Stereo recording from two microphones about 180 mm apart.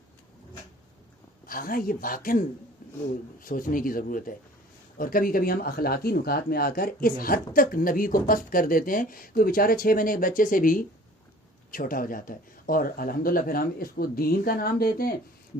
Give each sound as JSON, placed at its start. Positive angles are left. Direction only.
{"t": 1.5, "sound": "speech", "side_deg": 50}